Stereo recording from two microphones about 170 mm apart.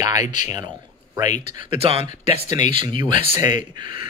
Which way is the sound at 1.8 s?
35° right (ahead or behind).